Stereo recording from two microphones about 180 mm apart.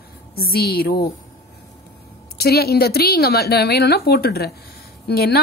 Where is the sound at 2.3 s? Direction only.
60° left (ahead or behind).